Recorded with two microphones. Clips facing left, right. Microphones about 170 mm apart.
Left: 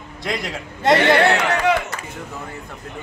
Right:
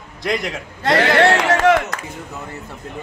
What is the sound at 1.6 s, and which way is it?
Chop, 90° right.